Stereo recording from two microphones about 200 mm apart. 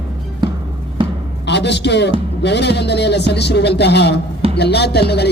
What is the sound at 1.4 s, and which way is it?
A man's voice, 60° left (ahead or behind).